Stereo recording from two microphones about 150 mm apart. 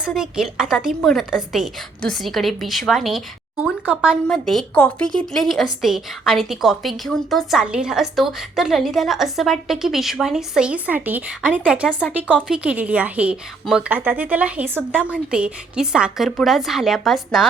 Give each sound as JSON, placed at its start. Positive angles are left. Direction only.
{"t": 0.0, "sound": "a woman's voice", "side_deg": -5}
{"t": 4.3, "sound": "a woman's voice", "side_deg": 5}